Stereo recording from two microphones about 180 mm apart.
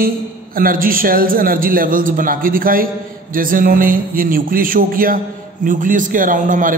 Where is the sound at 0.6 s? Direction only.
50° right (ahead or behind).